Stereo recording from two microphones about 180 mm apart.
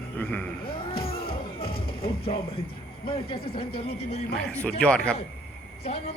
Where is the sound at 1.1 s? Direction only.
55° left (ahead or behind).